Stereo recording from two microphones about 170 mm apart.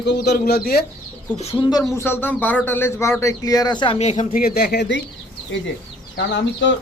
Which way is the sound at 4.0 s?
40° left (ahead or behind).